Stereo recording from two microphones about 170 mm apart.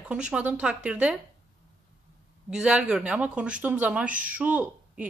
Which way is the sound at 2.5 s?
5° right (ahead or behind).